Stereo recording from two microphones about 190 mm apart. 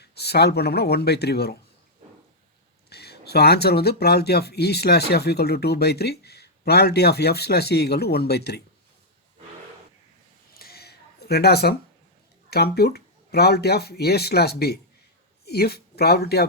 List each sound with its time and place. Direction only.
0.0 s speech: 60° left (ahead or behind)
2.9 s speech: 60° left (ahead or behind)
10.5 s a sound: 55° left (ahead or behind)
12.5 s speech: 55° left (ahead or behind)